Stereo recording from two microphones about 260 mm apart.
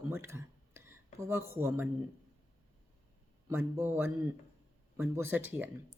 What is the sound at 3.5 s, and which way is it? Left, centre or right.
Speech, centre.